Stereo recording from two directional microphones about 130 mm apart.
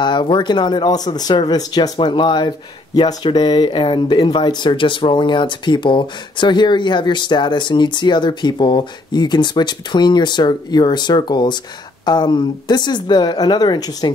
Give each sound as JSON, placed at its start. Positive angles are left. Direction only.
{"t": 0.0, "sound": "speech", "side_deg": 35}